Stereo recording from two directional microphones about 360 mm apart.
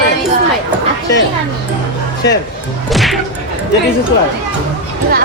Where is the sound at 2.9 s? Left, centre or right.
Centre.